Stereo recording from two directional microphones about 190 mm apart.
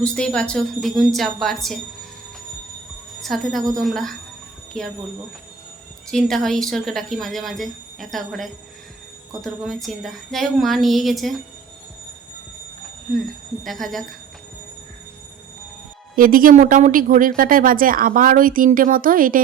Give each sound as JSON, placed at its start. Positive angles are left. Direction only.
{"t": 0.0, "sound": "speech", "side_deg": 5}
{"t": 3.2, "sound": "speech", "side_deg": 0}
{"t": 6.1, "sound": "speech", "side_deg": 0}
{"t": 13.7, "sound": "speech", "side_deg": 0}
{"t": 16.1, "sound": "speech", "side_deg": -45}